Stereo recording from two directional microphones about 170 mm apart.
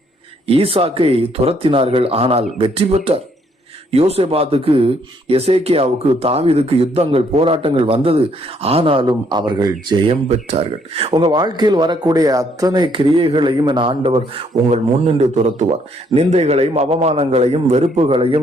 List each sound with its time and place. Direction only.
0.4 s speech: 35° right (ahead or behind)
10.2 s speech: 40° right (ahead or behind)